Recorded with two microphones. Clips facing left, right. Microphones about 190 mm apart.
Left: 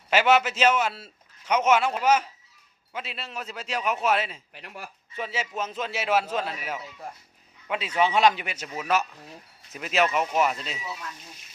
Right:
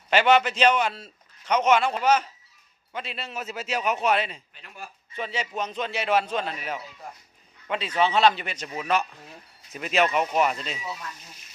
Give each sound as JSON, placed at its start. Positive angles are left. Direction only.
{"t": 0.1, "sound": "a man's voice", "side_deg": 5}
{"t": 4.5, "sound": "speech", "side_deg": 80}
{"t": 5.1, "sound": "a man's voice", "side_deg": 5}